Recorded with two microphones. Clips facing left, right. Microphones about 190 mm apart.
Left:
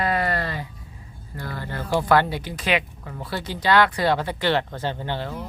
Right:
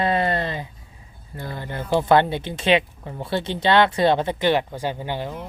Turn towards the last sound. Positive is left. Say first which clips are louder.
# right 1 dB
turn(degrees=-15)  # may be behind; listen again after turning